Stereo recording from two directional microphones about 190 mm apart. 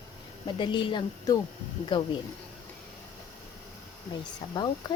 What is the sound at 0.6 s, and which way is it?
Speech, 25° left (ahead or behind).